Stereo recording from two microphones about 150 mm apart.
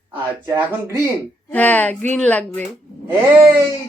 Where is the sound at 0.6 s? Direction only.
15° right (ahead or behind).